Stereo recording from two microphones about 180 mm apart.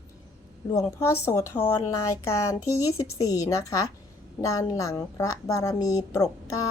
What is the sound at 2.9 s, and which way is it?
A woman's voice, 15° left (ahead or behind).